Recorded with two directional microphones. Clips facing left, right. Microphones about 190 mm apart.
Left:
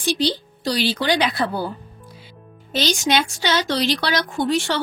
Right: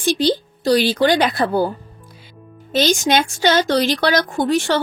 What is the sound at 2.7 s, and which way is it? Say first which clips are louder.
Speech: right 4 dB; 50° right (ahead or behind).